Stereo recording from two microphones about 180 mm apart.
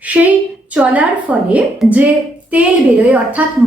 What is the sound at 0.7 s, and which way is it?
A woman's voice, 5° right (ahead or behind).